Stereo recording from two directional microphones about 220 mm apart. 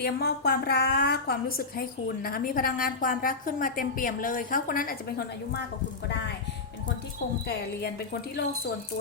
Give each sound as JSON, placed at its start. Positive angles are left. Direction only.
{"t": 0.0, "sound": "a woman's voice", "side_deg": 45}
{"t": 7.4, "sound": "a woman's voice", "side_deg": 45}